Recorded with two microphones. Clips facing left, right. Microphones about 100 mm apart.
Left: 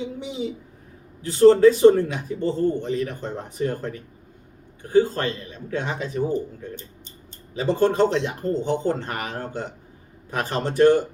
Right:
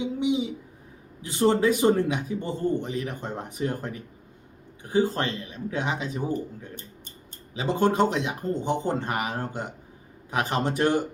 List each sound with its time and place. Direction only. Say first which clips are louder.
0.2 s a woman's voice: right 4 dB; 10° right (ahead or behind)
7.6 s a man's voice: left 3 dB; 15° right (ahead or behind)